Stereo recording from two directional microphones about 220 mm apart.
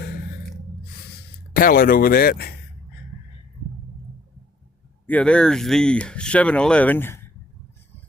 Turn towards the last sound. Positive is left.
turn(degrees=10)  # may be behind; listen again after turning